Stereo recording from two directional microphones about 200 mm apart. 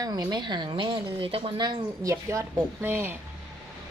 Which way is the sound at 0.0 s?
20° right (ahead or behind).